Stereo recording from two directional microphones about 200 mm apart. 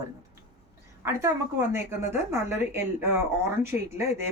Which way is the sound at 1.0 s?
15° right (ahead or behind).